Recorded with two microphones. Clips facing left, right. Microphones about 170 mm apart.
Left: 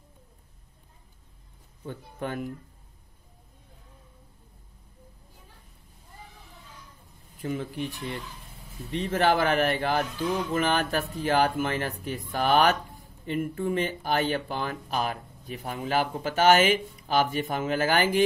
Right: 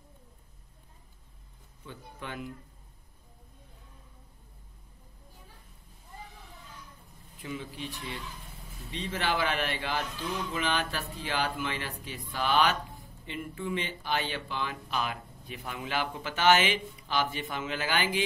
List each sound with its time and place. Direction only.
1.9 s speech: 45° left (ahead or behind)
7.4 s speech: 50° left (ahead or behind)